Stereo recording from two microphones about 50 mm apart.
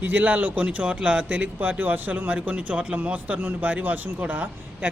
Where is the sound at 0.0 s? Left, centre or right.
Right.